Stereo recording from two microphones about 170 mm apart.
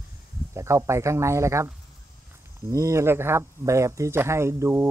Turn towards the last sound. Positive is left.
turn(degrees=-15)  # may be behind; listen again after turning